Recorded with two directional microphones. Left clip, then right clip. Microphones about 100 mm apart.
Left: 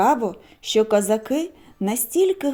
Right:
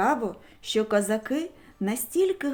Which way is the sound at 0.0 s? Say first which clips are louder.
Left 6 dB; 45° left (ahead or behind).